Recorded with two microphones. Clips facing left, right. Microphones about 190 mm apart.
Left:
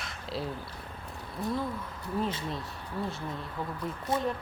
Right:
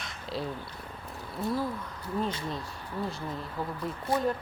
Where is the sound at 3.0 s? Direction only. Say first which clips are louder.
Right 1 dB; centre (ahead or behind).